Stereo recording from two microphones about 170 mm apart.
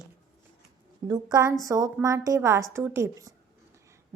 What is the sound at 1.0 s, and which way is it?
A woman's voice, 20° right (ahead or behind).